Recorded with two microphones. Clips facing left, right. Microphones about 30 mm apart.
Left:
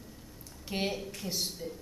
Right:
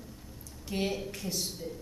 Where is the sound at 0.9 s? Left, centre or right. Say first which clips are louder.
Right 2 dB; centre.